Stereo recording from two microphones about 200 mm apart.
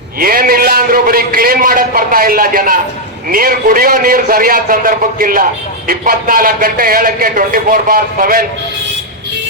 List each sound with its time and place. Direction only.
0.2 s a man's voice: 45° right (ahead or behind)